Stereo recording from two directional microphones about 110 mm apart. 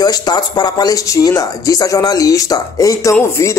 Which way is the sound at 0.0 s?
40° left (ahead or behind).